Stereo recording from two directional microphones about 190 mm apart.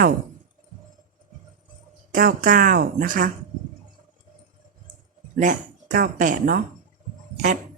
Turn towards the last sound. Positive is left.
turn(degrees=-40)  # may be behind; listen again after turning